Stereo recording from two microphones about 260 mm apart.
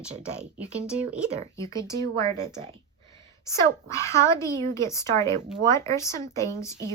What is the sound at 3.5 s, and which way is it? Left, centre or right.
Speech, centre.